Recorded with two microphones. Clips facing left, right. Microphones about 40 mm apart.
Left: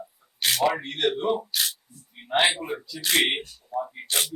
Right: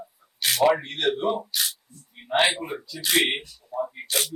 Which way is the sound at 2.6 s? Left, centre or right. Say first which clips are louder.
Left 1 dB; centre.